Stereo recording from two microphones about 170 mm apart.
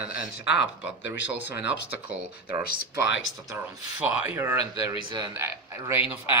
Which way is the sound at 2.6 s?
90° left.